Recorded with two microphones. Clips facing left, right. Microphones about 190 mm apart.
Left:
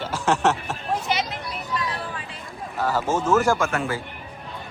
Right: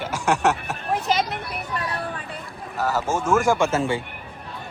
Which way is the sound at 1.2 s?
55° right (ahead or behind).